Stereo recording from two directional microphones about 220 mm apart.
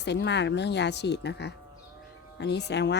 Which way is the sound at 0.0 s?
50° left (ahead or behind).